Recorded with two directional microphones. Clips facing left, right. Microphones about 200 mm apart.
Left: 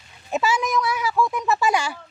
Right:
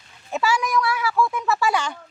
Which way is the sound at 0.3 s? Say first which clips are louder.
Even; 20° left (ahead or behind).